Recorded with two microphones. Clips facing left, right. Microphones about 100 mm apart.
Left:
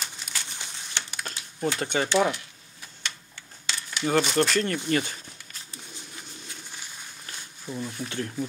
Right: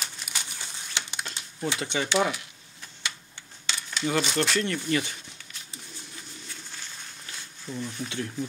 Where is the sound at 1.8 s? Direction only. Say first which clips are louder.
Left 3 dB; 45° left (ahead or behind).